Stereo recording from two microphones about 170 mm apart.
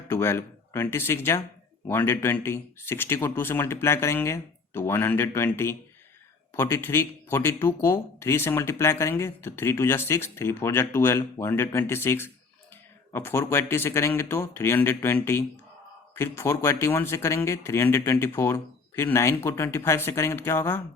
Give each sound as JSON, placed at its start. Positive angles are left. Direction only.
{"t": 0.1, "sound": "speech", "side_deg": 15}